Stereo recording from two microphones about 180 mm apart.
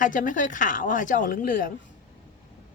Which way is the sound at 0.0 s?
45° left (ahead or behind).